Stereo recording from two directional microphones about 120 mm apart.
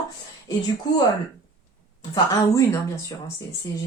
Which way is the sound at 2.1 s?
30° left (ahead or behind).